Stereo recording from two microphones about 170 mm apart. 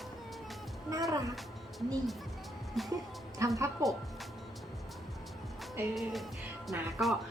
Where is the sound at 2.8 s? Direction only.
Centre (ahead or behind).